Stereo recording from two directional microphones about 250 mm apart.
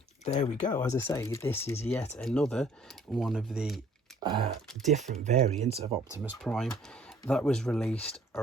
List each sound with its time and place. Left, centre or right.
0.3 s speech: left; by 3.8 s centre
4.2 s a sound: centre
4.9 s speech: right
6.2 s speech: centre